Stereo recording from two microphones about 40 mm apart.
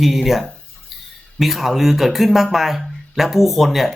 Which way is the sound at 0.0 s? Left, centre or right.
Centre.